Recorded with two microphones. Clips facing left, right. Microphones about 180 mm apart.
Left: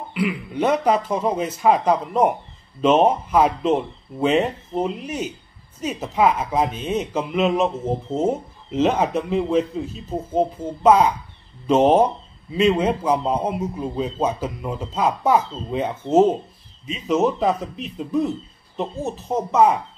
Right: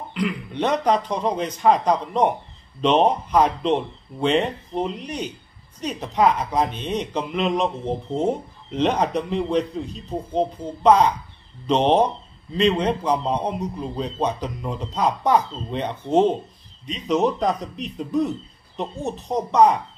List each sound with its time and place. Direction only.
0.1 s a man's voice: 5° left (ahead or behind)